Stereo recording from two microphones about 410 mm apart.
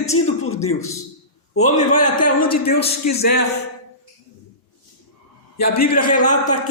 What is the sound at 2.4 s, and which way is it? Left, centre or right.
Speech, left.